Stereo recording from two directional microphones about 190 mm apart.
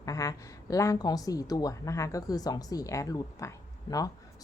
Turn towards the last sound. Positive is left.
turn(degrees=20)  # may be behind; listen again after turning